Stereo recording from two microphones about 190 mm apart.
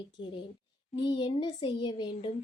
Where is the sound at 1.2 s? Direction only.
25° left (ahead or behind).